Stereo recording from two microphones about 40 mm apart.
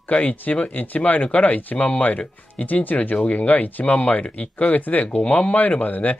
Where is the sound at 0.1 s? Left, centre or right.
Left.